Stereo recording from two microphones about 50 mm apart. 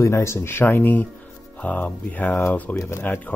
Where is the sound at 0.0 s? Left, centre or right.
Left.